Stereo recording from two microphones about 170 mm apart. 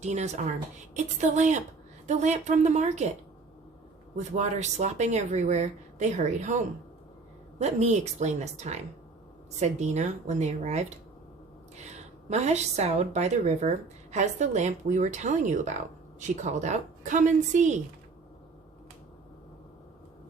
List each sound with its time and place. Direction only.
0.0 s a woman's voice: 40° right (ahead or behind)
4.2 s a woman's voice: 45° right (ahead or behind)